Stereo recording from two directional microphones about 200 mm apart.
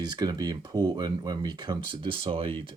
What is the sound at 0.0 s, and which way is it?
Speech, 20° right (ahead or behind).